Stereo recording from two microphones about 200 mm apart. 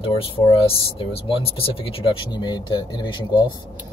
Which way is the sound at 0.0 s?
25° left (ahead or behind).